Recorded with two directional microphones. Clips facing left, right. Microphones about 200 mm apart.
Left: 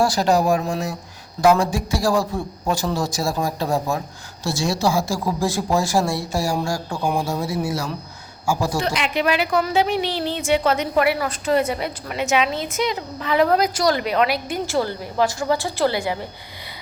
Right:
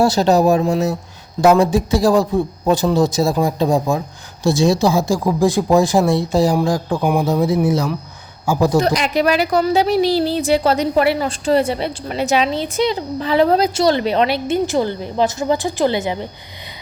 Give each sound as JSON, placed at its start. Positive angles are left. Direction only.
{"t": 0.0, "sound": "speech", "side_deg": -25}
{"t": 8.8, "sound": "a woman's voice", "side_deg": -40}